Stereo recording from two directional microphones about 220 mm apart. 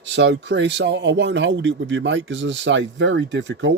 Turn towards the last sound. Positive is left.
turn(degrees=-55)  # may be behind; listen again after turning